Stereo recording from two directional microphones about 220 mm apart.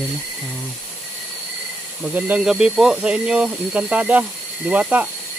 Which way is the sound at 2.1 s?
5° right (ahead or behind).